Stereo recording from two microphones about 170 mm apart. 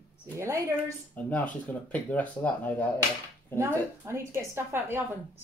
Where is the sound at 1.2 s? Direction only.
10° left (ahead or behind).